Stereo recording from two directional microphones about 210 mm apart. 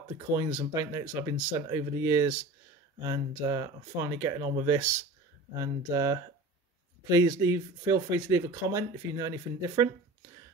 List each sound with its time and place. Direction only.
0.3 s speech: 15° right (ahead or behind)